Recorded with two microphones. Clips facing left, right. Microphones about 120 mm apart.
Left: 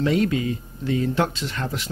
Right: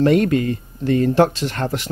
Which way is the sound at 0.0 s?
55° right (ahead or behind).